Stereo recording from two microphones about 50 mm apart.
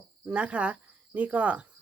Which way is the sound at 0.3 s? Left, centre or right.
Right.